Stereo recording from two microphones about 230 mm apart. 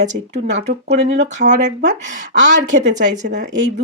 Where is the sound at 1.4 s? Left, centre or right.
Right.